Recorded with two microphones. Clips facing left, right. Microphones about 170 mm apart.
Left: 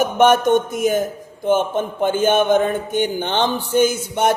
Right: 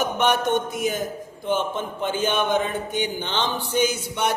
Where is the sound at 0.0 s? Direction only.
50° left (ahead or behind).